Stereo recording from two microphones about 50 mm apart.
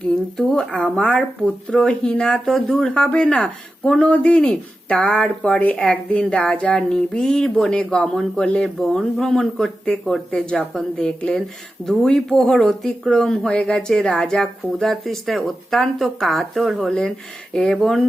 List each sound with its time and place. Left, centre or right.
0.5 s speech: centre
1.0 s a sound: left
1.7 s speech: centre
4.0 s a sound: left
7.5 s speech: centre
8.8 s speech: centre
14.8 s speech: centre